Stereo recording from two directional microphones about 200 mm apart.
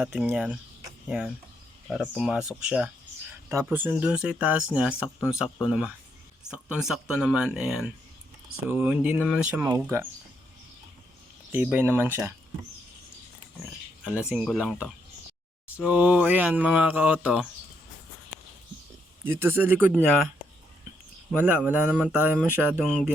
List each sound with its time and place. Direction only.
0.0 s speech: 5° right (ahead or behind)
11.5 s speech: 10° right (ahead or behind)
14.0 s speech: 5° right (ahead or behind)
19.2 s speech: 10° right (ahead or behind)
21.3 s speech: 10° right (ahead or behind)